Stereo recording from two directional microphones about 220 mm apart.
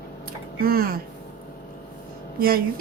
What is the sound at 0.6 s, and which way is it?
Speech, 40° right (ahead or behind).